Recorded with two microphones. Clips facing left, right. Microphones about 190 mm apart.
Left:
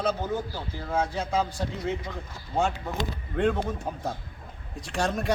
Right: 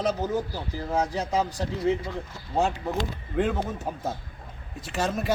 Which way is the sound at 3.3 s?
5° right (ahead or behind).